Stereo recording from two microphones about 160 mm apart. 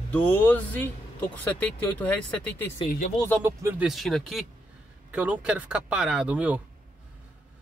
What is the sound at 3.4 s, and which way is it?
Speech, 15° right (ahead or behind).